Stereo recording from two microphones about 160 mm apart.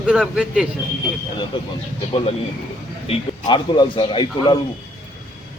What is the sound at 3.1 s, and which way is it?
A man's voice, 40° left (ahead or behind).